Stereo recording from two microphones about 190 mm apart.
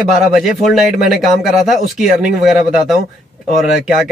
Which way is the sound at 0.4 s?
Centre (ahead or behind).